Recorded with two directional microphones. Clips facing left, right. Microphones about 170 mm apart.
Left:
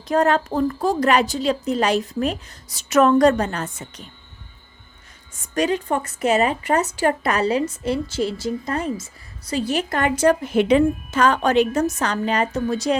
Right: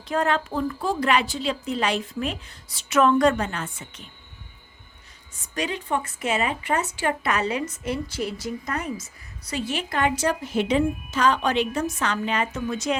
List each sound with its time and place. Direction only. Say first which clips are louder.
0.0 s a woman's voice: left 5 dB; 40° left (ahead or behind)
5.5 s a woman's voice: left 6 dB; 45° left (ahead or behind)